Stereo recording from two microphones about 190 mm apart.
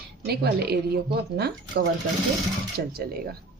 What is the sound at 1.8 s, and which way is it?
Speech, 50° right (ahead or behind).